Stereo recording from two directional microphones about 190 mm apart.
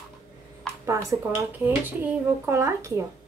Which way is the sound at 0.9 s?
15° right (ahead or behind).